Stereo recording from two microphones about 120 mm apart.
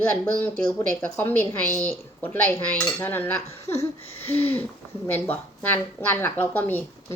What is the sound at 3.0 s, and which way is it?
A woman's voice, 15° left (ahead or behind).